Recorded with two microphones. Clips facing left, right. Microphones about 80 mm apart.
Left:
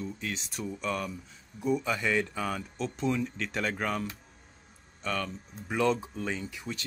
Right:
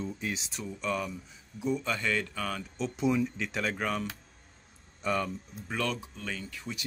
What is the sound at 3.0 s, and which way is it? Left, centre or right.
Speech, centre.